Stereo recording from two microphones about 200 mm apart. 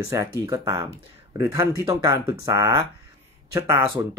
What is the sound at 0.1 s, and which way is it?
Speech, 15° right (ahead or behind).